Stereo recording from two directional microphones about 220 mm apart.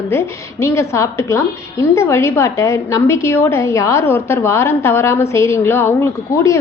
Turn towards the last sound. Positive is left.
turn(degrees=15)  # may be behind; listen again after turning